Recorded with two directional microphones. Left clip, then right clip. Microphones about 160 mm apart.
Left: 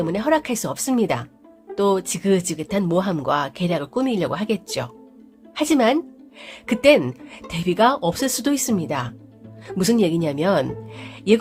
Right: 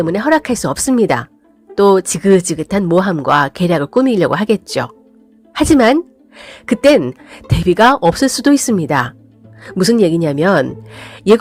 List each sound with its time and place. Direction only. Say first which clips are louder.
0.0 s a woman's voice: right 7 dB; 40° right (ahead or behind)
9.6 s speech: right 7 dB; 40° right (ahead or behind)